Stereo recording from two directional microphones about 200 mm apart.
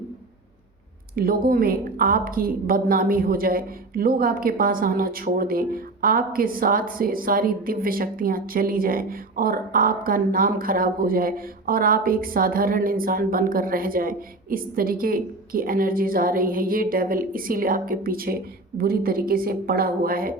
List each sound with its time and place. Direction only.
1.1 s a woman's voice: 45° right (ahead or behind)